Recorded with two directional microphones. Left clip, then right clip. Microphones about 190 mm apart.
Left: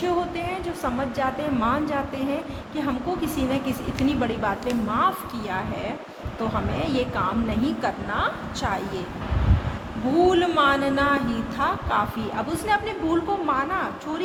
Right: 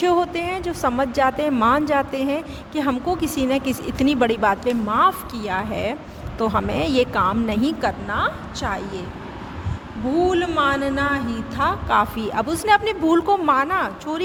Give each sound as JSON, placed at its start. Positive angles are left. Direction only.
{"t": 0.0, "sound": "a woman's voice", "side_deg": -55}
{"t": 10.2, "sound": "a woman's voice", "side_deg": -25}
{"t": 11.6, "sound": "a woman's voice", "side_deg": -55}